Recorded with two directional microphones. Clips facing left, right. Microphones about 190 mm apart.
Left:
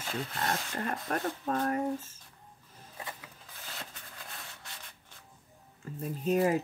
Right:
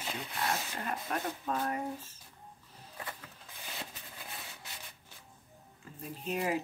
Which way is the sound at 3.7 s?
15° right (ahead or behind).